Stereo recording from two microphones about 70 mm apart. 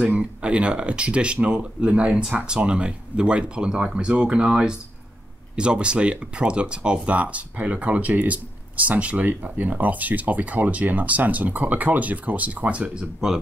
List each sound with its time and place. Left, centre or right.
0.0 s speech: centre